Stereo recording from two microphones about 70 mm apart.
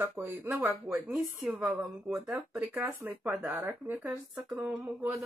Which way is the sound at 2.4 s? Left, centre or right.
Right.